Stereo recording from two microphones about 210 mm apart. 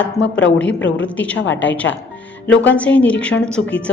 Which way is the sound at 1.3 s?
60° left (ahead or behind).